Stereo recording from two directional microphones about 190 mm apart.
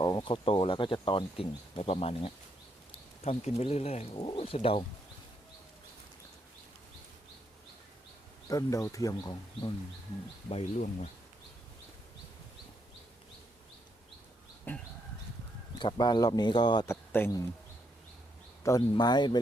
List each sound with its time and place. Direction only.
0.0 s speech: 25° left (ahead or behind)
8.4 s speech: 15° left (ahead or behind)
10.5 s speech: 40° left (ahead or behind)
14.7 s speech: 10° left (ahead or behind)
15.8 s speech: 25° left (ahead or behind)
18.6 s speech: 20° left (ahead or behind)